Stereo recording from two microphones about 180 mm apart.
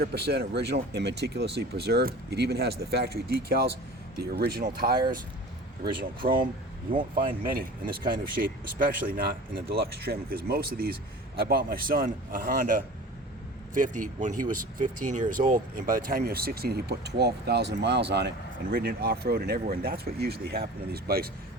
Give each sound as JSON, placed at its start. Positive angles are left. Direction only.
{"t": 0.0, "sound": "speech", "side_deg": -60}
{"t": 4.9, "sound": "speech", "side_deg": -25}
{"t": 8.2, "sound": "a man's voice", "side_deg": -50}
{"t": 18.7, "sound": "speech", "side_deg": -60}